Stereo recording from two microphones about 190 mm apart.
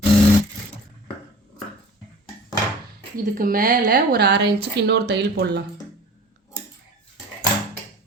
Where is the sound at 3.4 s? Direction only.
50° right (ahead or behind).